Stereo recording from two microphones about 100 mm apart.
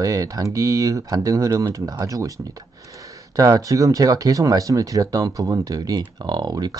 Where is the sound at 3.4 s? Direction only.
35° right (ahead or behind).